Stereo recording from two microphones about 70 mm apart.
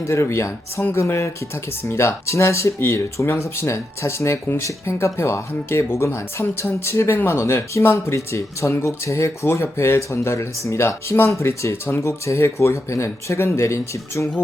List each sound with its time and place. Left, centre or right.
0.0 s speech: left